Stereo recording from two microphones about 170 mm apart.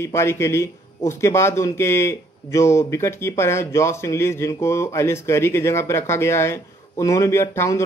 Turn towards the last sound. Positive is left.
turn(degrees=15)  # may be behind; listen again after turning